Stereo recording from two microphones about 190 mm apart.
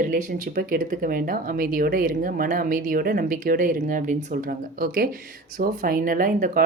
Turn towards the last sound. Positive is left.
turn(degrees=-45)  # may be behind; listen again after turning